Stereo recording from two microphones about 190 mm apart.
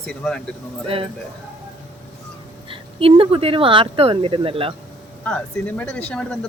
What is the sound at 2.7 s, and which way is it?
Speech, 30° right (ahead or behind).